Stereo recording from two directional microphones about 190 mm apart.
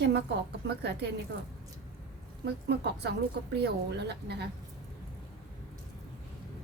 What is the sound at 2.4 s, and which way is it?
A woman's voice, 60° right (ahead or behind).